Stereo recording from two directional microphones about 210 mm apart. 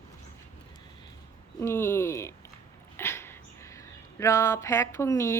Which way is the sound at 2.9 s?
10° left (ahead or behind).